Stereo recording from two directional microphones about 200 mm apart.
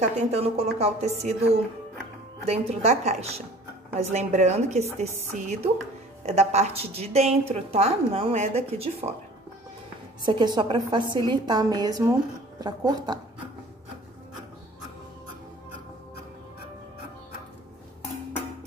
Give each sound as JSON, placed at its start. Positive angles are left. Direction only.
{"t": 0.2, "sound": "a woman's voice", "side_deg": -30}
{"t": 10.2, "sound": "a woman's voice", "side_deg": -20}